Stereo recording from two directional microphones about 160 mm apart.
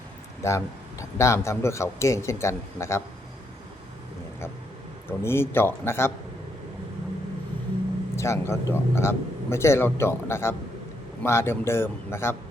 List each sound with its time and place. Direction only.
0.4 s a man's voice: 20° left (ahead or behind)
5.0 s a man's voice: 15° left (ahead or behind)
8.1 s a man's voice: 15° left (ahead or behind)